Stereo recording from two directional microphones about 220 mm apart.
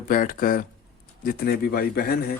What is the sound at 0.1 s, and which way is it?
Speech, 40° left (ahead or behind).